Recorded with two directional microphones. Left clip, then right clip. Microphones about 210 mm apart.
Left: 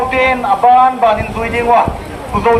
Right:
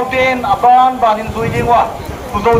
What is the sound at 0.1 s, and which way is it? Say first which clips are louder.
A man's voice: even; 20° left (ahead or behind).